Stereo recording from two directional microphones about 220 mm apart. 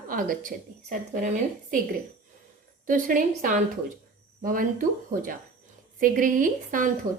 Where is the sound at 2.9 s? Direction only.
35° right (ahead or behind).